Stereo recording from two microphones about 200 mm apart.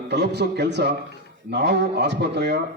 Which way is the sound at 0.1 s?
55° right (ahead or behind).